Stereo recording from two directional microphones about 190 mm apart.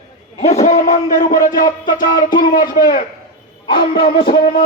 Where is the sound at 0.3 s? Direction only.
35° left (ahead or behind).